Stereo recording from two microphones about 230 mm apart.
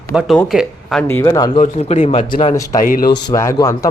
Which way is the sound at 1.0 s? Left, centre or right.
Centre.